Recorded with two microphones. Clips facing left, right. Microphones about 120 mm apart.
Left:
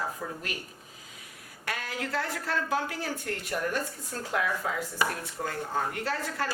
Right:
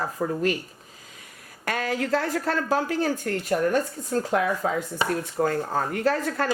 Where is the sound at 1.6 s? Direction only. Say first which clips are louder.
Right 8 dB; 50° right (ahead or behind).